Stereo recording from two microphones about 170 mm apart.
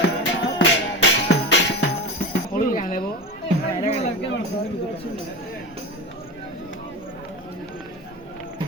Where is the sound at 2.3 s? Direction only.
55° left (ahead or behind).